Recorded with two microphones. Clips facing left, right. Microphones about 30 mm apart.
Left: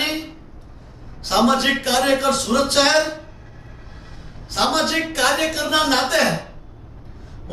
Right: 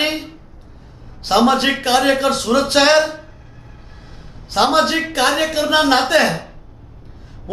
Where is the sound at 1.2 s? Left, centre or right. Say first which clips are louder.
Right 3 dB; centre.